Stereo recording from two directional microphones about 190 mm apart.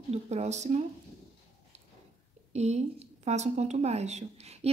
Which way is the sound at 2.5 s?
35° right (ahead or behind).